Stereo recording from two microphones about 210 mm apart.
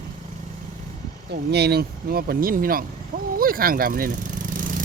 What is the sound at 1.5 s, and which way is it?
Speech, 50° right (ahead or behind).